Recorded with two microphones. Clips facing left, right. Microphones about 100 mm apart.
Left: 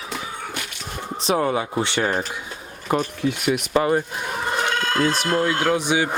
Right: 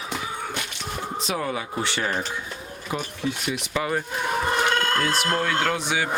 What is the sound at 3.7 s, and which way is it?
Speech, 40° left (ahead or behind).